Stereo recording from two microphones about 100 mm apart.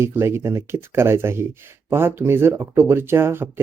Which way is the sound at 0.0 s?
25° right (ahead or behind).